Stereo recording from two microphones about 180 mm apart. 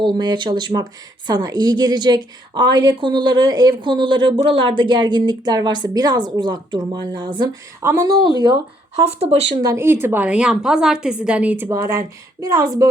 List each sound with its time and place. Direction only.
0.0 s speech: 25° right (ahead or behind)
9.0 s speech: 35° right (ahead or behind)
9.6 s a woman's voice: 15° right (ahead or behind)